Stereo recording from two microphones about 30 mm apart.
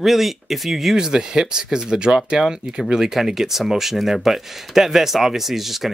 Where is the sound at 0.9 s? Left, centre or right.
Centre.